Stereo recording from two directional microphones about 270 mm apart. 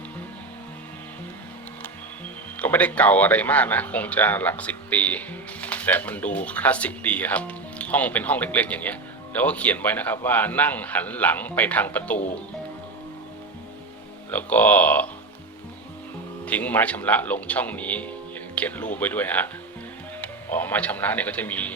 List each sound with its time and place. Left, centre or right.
2.6 s speech: centre
14.3 s speech: centre
16.5 s speech: centre